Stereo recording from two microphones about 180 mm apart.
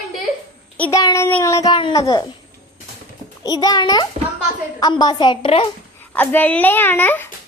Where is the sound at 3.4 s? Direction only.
20° left (ahead or behind).